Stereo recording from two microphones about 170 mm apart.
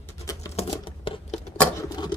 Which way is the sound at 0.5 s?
30° left (ahead or behind).